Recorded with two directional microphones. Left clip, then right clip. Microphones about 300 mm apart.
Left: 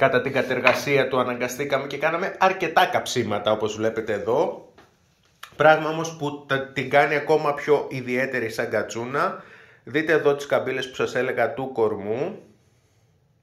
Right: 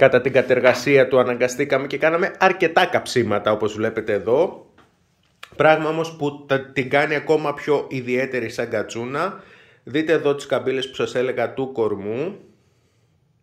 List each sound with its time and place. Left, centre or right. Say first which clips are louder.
0.0 s a man's voice: right 5 dB; right